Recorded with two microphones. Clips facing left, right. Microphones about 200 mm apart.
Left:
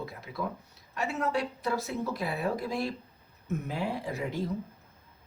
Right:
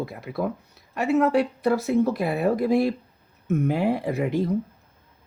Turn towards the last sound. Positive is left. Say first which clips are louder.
# right 9 dB
turn(degrees=-60)  # may be behind; listen again after turning